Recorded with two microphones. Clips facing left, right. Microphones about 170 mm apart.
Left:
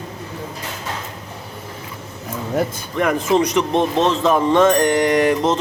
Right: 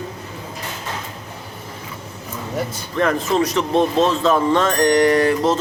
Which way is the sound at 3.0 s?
15° left (ahead or behind).